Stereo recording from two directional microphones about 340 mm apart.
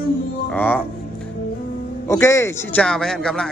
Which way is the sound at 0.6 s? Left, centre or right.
Centre.